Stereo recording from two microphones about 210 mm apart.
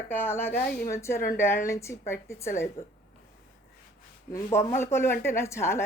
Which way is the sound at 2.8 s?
30° left (ahead or behind).